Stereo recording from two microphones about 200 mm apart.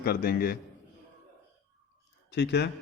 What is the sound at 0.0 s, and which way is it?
Speech, 50° left (ahead or behind).